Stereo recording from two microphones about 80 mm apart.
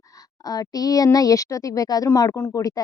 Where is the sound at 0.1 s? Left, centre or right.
Left.